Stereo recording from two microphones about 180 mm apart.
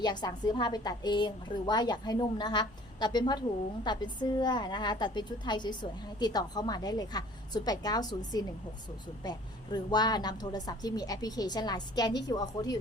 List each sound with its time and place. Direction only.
0.0 s a woman's voice: 25° left (ahead or behind)
9.7 s a woman's voice: 25° left (ahead or behind)